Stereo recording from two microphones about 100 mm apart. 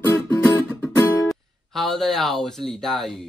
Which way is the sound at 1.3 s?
Centre (ahead or behind).